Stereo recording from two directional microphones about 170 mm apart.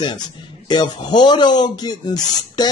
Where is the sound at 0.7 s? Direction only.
25° left (ahead or behind).